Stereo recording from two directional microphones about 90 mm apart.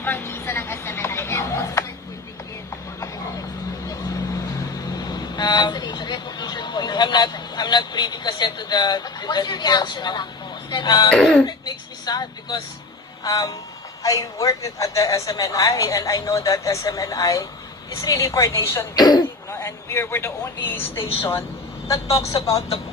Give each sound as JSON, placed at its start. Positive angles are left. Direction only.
{"t": 0.0, "sound": "a sound", "side_deg": 25}
{"t": 4.9, "sound": "vehicle", "side_deg": 50}
{"t": 10.7, "sound": "speech", "side_deg": 55}
{"t": 11.1, "sound": "speech", "side_deg": 5}
{"t": 11.4, "sound": "a sound", "side_deg": 50}
{"t": 13.2, "sound": "a woman's voice", "side_deg": 45}
{"t": 18.9, "sound": "speech", "side_deg": 50}
{"t": 19.5, "sound": "a woman's voice", "side_deg": 30}